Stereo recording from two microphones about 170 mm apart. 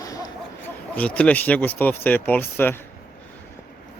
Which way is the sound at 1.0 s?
5° left (ahead or behind).